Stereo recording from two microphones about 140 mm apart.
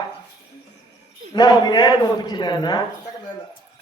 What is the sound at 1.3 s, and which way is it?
A man's voice, 30° left (ahead or behind).